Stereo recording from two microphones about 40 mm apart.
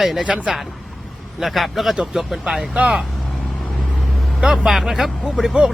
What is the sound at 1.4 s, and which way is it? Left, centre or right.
Speech, centre.